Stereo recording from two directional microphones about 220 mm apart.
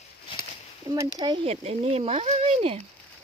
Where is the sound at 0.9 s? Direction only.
20° right (ahead or behind).